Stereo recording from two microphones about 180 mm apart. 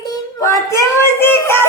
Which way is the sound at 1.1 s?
15° left (ahead or behind).